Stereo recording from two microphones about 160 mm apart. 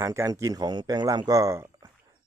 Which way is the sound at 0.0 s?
20° right (ahead or behind).